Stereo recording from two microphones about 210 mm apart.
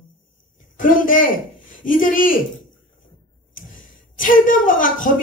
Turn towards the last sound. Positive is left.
turn(degrees=40)  # may be behind; listen again after turning